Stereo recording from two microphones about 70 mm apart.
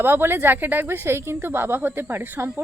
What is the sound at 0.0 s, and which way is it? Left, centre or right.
Speech, right.